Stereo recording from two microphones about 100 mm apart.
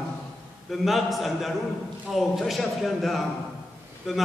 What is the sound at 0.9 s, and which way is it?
Speech, centre (ahead or behind).